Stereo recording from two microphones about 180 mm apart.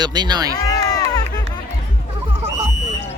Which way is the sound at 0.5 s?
20° left (ahead or behind).